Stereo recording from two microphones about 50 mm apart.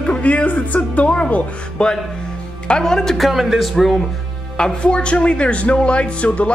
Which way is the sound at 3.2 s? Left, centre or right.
Centre.